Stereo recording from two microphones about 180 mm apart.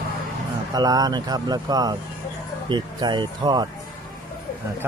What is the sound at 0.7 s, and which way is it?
Speech, 20° right (ahead or behind).